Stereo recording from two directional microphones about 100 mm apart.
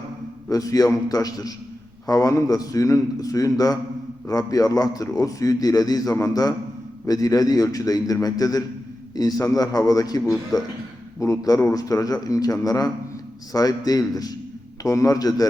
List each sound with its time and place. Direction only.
0.5 s a man's voice: 40° left (ahead or behind)